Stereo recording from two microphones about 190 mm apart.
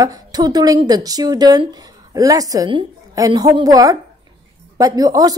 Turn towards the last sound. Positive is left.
turn(degrees=-20)  # may be behind; listen again after turning